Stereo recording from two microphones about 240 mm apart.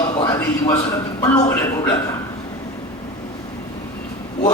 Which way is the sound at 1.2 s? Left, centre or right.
Left.